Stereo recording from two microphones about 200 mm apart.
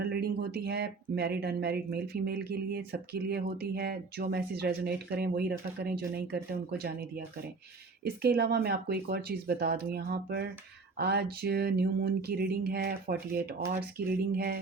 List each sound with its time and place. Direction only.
0.0 s speech: 55° right (ahead or behind)
8.2 s speech: 50° right (ahead or behind)